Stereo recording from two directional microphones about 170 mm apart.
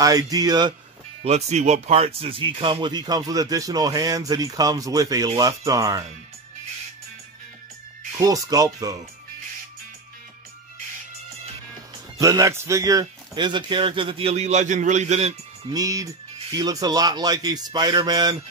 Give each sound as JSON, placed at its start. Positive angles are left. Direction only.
{"t": 0.0, "sound": "speech", "side_deg": -20}
{"t": 1.2, "sound": "speech", "side_deg": -40}
{"t": 8.2, "sound": "speech", "side_deg": -20}
{"t": 12.2, "sound": "a man's voice", "side_deg": -20}
{"t": 15.7, "sound": "speech", "side_deg": -20}